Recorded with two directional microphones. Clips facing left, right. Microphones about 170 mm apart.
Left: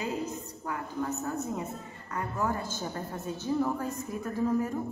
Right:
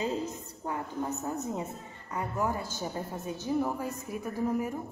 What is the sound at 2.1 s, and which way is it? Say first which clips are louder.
A woman's voice: even; 15° right (ahead or behind).